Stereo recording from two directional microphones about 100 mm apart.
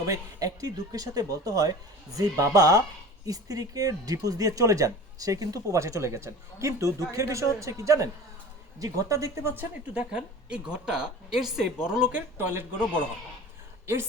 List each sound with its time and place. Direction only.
0.0 s a woman's voice: 35° right (ahead or behind); by 12.2 s 10° right (ahead or behind)
12.4 s speech: 20° right (ahead or behind)